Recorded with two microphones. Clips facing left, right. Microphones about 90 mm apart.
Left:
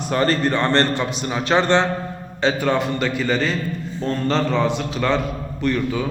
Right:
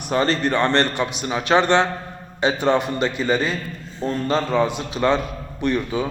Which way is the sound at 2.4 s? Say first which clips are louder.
Right 1 dB; 20° right (ahead or behind).